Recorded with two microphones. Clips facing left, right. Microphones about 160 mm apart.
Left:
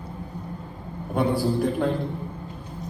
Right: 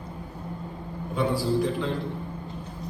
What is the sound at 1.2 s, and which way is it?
Speech, 55° left (ahead or behind).